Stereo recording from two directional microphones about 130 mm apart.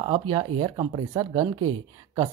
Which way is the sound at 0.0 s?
45° right (ahead or behind).